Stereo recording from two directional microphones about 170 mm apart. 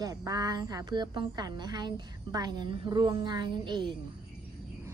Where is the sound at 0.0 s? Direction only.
20° right (ahead or behind).